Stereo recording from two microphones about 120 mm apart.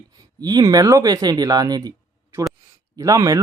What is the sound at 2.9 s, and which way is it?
Speech, 25° right (ahead or behind).